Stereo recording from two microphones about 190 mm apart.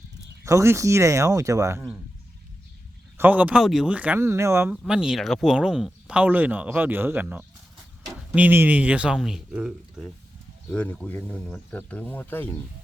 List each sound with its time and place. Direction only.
0.4 s speech: 15° right (ahead or behind)
3.2 s speech: 10° right (ahead or behind)
4.8 s speech: 5° right (ahead or behind)